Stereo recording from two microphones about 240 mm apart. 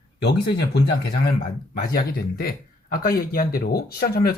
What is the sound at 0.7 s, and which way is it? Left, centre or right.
Speech, left.